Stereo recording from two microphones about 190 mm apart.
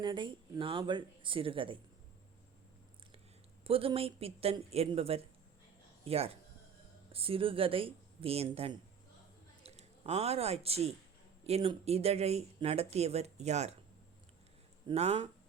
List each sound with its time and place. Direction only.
0.0 s speech: 25° right (ahead or behind)
3.6 s speech: 30° right (ahead or behind)
14.8 s speech: 35° right (ahead or behind)